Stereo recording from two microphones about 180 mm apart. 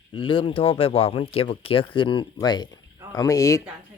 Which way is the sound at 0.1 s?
30° left (ahead or behind).